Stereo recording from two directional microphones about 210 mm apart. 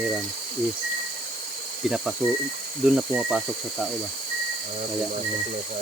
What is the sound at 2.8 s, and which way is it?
Speech, 5° right (ahead or behind).